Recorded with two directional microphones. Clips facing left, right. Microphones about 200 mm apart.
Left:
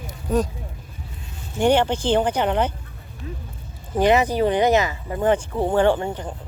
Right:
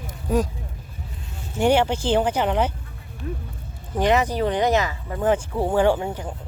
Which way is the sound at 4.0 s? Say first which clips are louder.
Left 3 dB; 5° left (ahead or behind).